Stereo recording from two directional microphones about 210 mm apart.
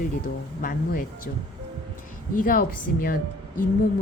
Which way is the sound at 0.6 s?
40° left (ahead or behind).